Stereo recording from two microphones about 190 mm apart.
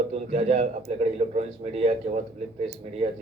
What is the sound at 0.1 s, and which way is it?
A man's voice, 35° right (ahead or behind).